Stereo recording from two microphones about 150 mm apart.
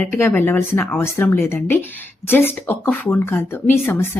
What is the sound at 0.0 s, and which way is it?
A woman's voice, 15° left (ahead or behind).